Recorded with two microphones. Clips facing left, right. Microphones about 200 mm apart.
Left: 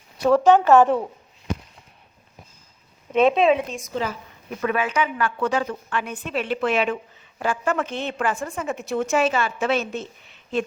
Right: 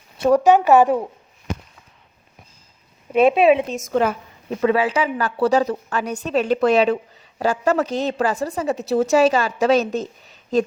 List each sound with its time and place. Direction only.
0.3 s a woman's voice: 15° right (ahead or behind)
3.1 s a woman's voice: 10° right (ahead or behind)
3.7 s a woman's voice: 50° right (ahead or behind)
4.4 s a woman's voice: 30° right (ahead or behind)